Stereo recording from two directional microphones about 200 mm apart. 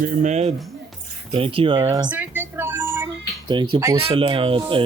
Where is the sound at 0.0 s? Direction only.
40° right (ahead or behind); by 2.0 s 25° right (ahead or behind).